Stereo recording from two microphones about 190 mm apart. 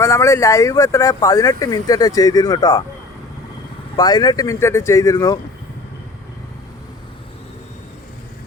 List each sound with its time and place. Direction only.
0.0 s speech: 15° left (ahead or behind)
3.9 s speech: 20° left (ahead or behind)